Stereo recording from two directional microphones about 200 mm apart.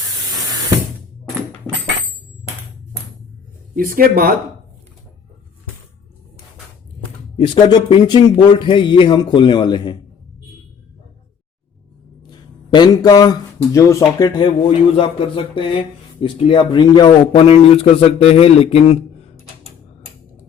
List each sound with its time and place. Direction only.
3.8 s speech: 45° right (ahead or behind)
7.3 s speech: 25° left (ahead or behind)
12.3 s speech: 20° left (ahead or behind)